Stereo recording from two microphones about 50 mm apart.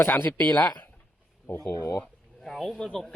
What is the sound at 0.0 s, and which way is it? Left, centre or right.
Speech, left.